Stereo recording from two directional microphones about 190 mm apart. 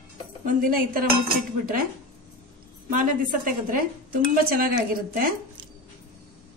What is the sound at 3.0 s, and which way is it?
Speech, 45° right (ahead or behind).